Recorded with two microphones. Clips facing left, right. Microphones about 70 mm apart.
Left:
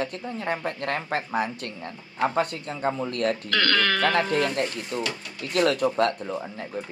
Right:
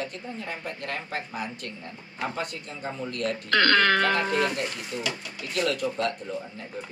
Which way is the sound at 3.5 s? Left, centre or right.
Right.